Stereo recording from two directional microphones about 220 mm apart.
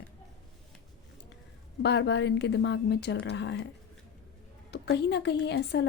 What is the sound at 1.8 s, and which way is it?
A woman's voice, 50° left (ahead or behind).